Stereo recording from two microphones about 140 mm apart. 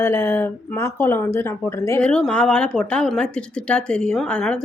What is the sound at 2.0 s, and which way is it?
Speech, 5° left (ahead or behind).